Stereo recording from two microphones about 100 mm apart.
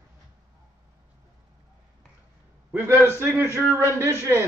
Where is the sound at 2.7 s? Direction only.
25° right (ahead or behind).